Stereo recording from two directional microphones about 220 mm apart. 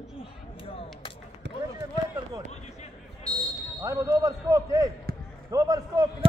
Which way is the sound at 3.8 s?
15° right (ahead or behind).